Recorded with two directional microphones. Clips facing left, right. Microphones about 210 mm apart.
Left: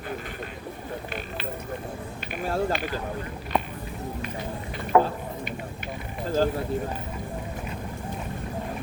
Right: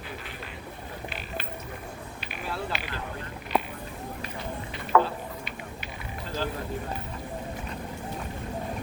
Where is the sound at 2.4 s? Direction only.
45° left (ahead or behind).